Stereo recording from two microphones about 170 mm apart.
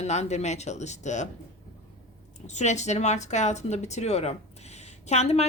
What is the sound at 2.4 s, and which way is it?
Speech, 45° left (ahead or behind).